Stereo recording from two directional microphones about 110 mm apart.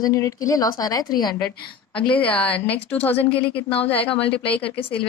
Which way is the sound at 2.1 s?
15° left (ahead or behind).